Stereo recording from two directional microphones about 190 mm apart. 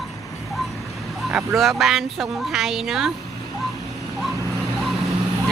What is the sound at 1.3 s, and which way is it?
Speech, centre (ahead or behind).